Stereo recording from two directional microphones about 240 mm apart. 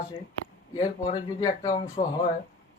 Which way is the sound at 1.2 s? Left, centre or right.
Centre.